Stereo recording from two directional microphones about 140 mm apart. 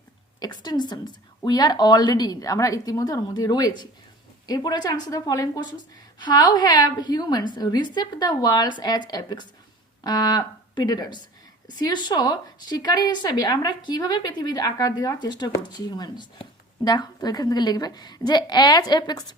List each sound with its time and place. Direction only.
0.3 s a woman's voice: 30° left (ahead or behind)